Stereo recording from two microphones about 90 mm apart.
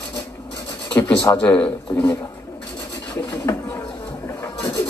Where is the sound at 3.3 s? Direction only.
30° left (ahead or behind).